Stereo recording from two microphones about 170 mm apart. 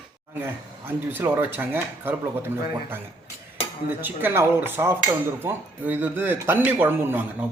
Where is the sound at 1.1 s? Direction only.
10° right (ahead or behind).